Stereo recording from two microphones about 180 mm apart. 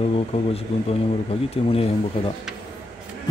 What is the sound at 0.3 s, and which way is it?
Speech, 35° left (ahead or behind).